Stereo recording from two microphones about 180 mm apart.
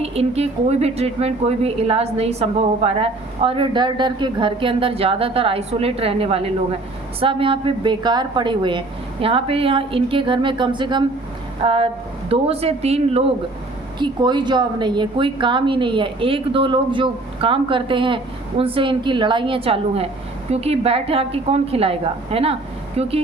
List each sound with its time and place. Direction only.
0.0 s a woman's voice: 35° right (ahead or behind)
14.0 s a woman's voice: 25° right (ahead or behind)